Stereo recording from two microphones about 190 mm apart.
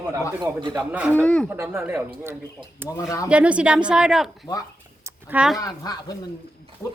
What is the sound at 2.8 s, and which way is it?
Speech, 15° left (ahead or behind).